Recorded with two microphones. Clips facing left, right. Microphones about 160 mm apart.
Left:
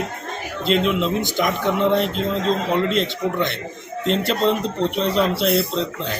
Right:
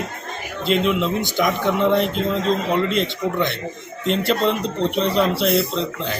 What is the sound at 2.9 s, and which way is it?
Speech, centre (ahead or behind).